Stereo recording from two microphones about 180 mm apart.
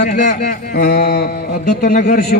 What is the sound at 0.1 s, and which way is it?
A man's voice, 50° left (ahead or behind).